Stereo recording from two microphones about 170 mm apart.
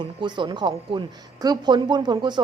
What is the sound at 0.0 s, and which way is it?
A woman's voice, 25° right (ahead or behind).